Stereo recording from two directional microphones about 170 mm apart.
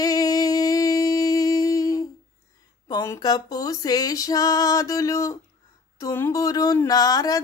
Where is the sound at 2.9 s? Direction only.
20° left (ahead or behind).